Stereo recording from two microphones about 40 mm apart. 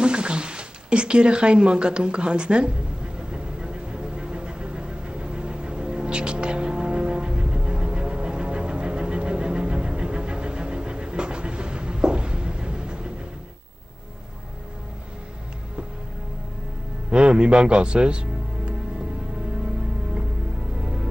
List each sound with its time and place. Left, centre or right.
0.0 s speech: right
3.2 s vehicle: right
17.1 s music: right
20.8 s music: right